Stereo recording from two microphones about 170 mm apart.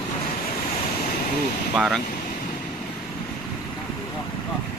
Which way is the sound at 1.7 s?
5° right (ahead or behind).